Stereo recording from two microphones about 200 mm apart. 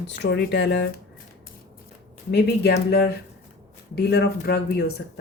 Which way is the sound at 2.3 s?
55° left (ahead or behind).